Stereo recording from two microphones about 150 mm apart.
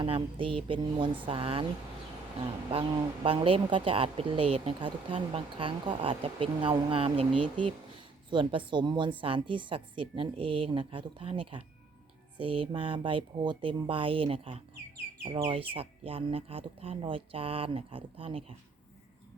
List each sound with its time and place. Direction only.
0.0 s speech: 35° right (ahead or behind)
2.6 s speech: 35° right (ahead or behind)